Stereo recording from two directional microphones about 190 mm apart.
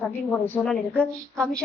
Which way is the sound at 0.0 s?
10° left (ahead or behind).